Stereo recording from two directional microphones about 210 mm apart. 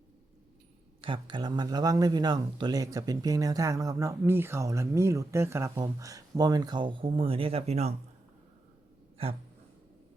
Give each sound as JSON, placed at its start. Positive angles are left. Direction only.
{"t": 1.0, "sound": "speech", "side_deg": -20}